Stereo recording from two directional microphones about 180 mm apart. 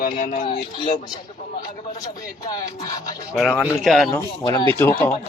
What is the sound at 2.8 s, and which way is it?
Speech, 20° left (ahead or behind).